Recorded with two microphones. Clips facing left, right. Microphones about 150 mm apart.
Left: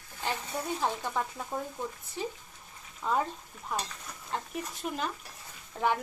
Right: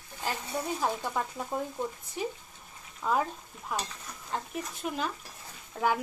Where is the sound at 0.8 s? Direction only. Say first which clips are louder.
Left 1 dB; 10° right (ahead or behind).